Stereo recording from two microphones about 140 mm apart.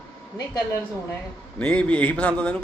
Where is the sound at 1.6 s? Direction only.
10° left (ahead or behind).